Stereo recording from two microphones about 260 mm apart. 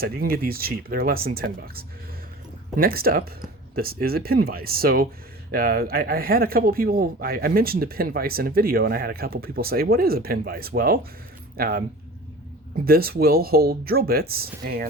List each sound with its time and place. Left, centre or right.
0.0 s speech: right